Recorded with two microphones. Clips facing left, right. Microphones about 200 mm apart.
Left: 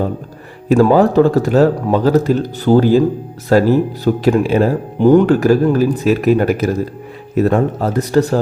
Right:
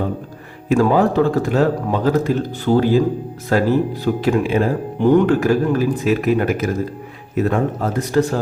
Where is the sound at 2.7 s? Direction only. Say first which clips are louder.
Left 5 dB; 55° left (ahead or behind).